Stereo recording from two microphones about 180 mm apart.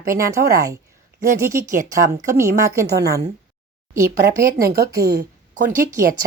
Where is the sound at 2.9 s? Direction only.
60° right (ahead or behind).